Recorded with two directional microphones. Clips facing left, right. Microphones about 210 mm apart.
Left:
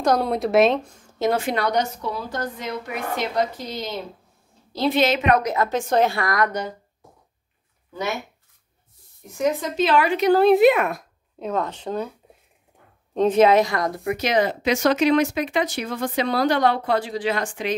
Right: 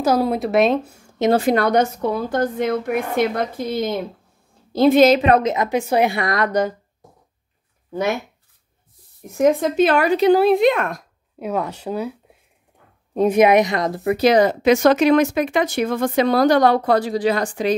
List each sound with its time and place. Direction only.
0.0 s speech: 5° right (ahead or behind)
1.3 s a woman's voice: 35° right (ahead or behind)
1.6 s a woman's voice: 55° right (ahead or behind); by 6.5 s 25° right (ahead or behind)
9.3 s a woman's voice: 55° right (ahead or behind)
10.4 s speech: 5° left (ahead or behind)
11.3 s a woman's voice: 10° right (ahead or behind); by 17.7 s 35° right (ahead or behind)